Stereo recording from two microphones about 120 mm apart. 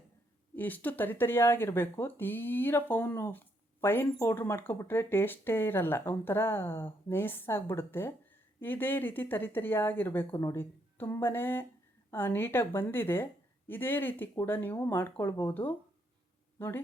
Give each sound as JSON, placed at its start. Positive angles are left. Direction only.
{"t": 0.5, "sound": "speech", "side_deg": 15}